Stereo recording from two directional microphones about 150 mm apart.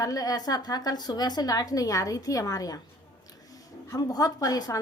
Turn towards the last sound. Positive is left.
turn(degrees=25)  # may be behind; listen again after turning